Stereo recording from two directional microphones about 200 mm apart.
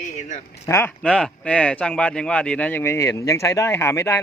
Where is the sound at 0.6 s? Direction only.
15° left (ahead or behind).